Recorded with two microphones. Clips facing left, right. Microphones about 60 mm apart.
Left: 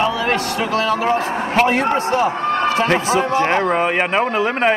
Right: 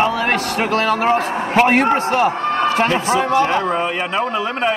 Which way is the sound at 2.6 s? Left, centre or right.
Right.